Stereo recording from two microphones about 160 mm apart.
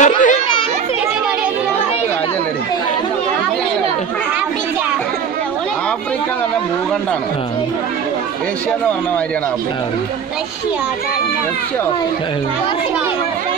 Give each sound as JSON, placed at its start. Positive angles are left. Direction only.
{"t": 0.0, "sound": "children playing", "side_deg": 50}